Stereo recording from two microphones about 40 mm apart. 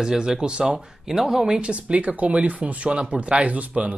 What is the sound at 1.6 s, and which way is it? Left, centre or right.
Speech, right.